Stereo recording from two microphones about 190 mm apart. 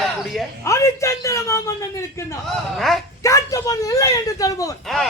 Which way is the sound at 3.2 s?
15° left (ahead or behind).